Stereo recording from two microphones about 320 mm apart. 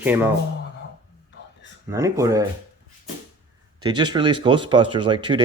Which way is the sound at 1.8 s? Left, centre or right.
Centre.